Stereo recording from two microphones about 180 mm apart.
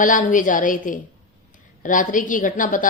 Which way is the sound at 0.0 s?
45° left (ahead or behind).